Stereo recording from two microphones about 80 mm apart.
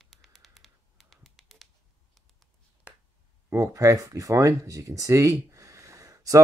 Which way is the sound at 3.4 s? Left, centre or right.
Right.